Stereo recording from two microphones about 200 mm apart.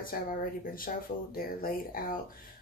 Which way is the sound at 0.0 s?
45° left (ahead or behind).